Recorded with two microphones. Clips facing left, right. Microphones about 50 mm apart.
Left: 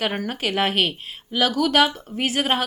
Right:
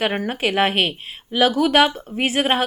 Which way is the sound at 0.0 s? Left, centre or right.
Right.